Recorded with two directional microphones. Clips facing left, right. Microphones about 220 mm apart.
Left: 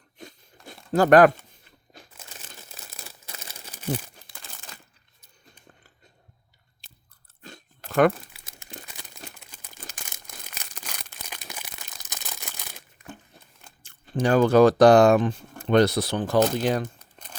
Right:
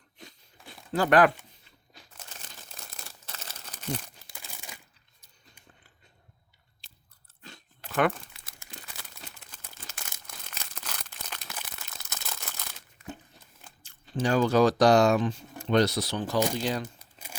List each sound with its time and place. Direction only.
0.2 s a sound: 45° left (ahead or behind)
3.2 s crumpling: 10° left (ahead or behind)
4.4 s crumpling: 10° right (ahead or behind)
7.4 s chewing: 45° left (ahead or behind)
8.4 s crumpling: 25° left (ahead or behind)
9.5 s a sound: 15° left (ahead or behind)
13.8 s speech: 55° left (ahead or behind)
17.0 s crumpling: 10° right (ahead or behind)